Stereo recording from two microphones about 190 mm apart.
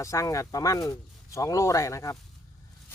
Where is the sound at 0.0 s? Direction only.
15° left (ahead or behind).